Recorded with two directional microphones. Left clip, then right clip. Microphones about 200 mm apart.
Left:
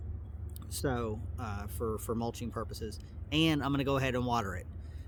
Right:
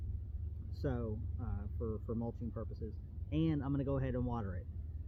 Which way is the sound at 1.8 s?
25° left (ahead or behind).